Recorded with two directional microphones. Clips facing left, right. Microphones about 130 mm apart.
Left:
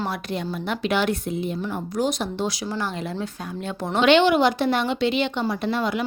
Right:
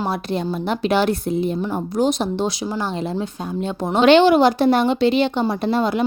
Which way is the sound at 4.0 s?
35° right (ahead or behind).